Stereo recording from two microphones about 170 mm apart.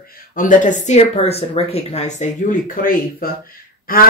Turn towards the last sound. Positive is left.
turn(degrees=55)  # may be behind; listen again after turning